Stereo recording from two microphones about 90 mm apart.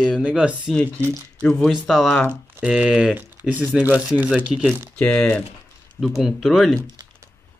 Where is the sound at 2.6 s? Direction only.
10° right (ahead or behind).